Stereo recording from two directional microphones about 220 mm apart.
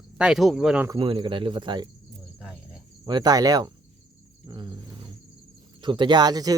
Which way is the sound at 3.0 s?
20° right (ahead or behind).